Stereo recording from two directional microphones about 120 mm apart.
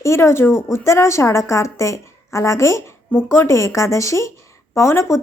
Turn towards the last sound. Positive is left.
turn(degrees=25)  # may be behind; listen again after turning